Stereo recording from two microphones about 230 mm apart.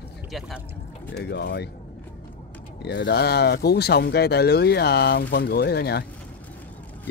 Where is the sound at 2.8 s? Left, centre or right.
Left.